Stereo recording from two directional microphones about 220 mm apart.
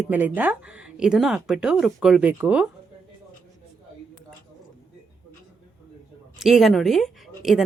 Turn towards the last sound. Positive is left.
turn(degrees=0)  # may be behind; listen again after turning